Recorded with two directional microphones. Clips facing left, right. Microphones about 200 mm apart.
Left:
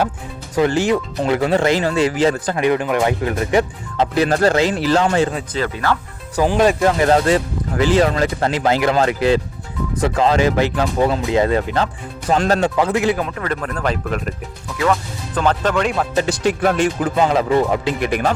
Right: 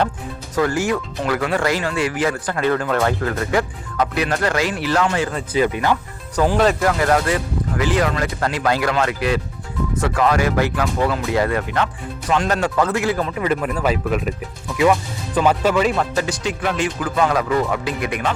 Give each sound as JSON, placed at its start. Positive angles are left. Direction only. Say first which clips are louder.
{"t": 0.5, "sound": "speech", "louder": "left 3 dB", "side_deg": 25}
{"t": 2.6, "sound": "speech", "louder": "even", "side_deg": 15}
{"t": 5.5, "sound": "speech", "louder": "right 3 dB", "side_deg": -15}
{"t": 6.3, "sound": "speech", "louder": "left 1 dB", "side_deg": 15}
{"t": 12.5, "sound": "speech", "louder": "left 2 dB", "side_deg": 20}
{"t": 13.3, "sound": "speech", "louder": "right 3 dB", "side_deg": -10}
{"t": 15.4, "sound": "speech", "louder": "right 1 dB", "side_deg": -10}
{"t": 16.1, "sound": "speech", "louder": "left 3 dB", "side_deg": 30}
{"t": 16.4, "sound": "speech", "louder": "left 5 dB", "side_deg": 55}
{"t": 17.0, "sound": "speech", "louder": "left 3 dB", "side_deg": 25}